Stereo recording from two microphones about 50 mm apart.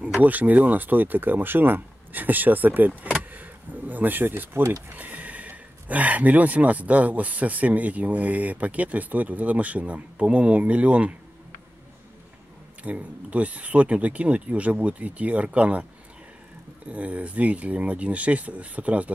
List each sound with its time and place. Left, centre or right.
0.2 s speech: right
4.9 s speech: right
12.8 s speech: right